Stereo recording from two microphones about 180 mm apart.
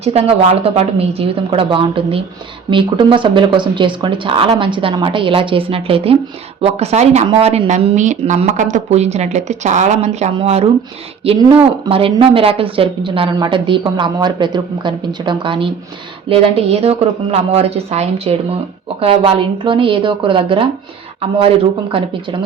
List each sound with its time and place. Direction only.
0.0 s a woman's voice: 35° right (ahead or behind)